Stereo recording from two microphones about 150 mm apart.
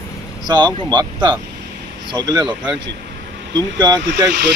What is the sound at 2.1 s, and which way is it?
Speech, 25° right (ahead or behind).